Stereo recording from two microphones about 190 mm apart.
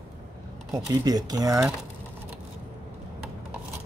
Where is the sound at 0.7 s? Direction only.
20° right (ahead or behind).